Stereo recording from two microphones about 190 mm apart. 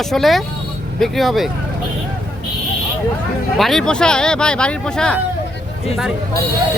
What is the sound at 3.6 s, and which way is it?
Speech, centre (ahead or behind).